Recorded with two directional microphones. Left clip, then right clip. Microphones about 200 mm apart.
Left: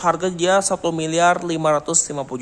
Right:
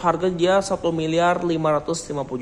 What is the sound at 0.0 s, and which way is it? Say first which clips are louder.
A man's voice: left 1 dB; 15° left (ahead or behind).